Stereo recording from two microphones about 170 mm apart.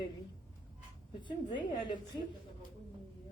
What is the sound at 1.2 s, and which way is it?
Speech, 30° left (ahead or behind).